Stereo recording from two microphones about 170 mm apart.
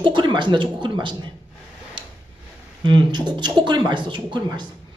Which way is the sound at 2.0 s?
30° right (ahead or behind).